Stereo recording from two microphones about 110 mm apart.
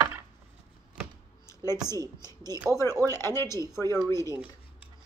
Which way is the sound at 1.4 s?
25° left (ahead or behind).